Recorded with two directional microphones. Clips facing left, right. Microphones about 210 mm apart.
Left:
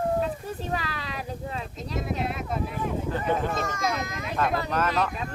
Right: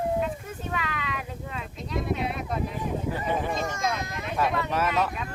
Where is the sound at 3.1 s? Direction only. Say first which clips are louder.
Left 2 dB; 10° right (ahead or behind).